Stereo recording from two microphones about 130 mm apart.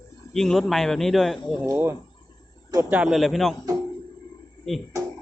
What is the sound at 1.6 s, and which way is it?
Speech, 25° right (ahead or behind).